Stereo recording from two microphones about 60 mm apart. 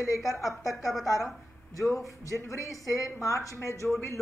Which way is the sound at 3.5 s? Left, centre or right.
Left.